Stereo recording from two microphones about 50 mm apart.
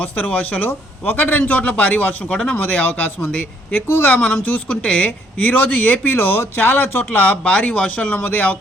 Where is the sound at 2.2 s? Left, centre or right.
Centre.